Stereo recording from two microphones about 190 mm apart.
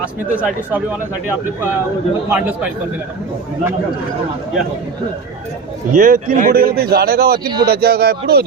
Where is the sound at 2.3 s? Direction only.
5° right (ahead or behind).